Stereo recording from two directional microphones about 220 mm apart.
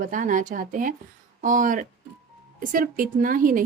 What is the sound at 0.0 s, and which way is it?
A woman's voice, 35° right (ahead or behind).